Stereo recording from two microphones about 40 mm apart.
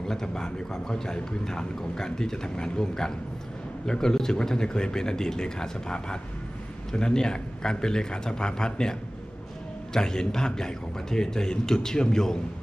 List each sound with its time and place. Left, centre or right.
0.1 s a man's voice: centre
9.9 s a man's voice: centre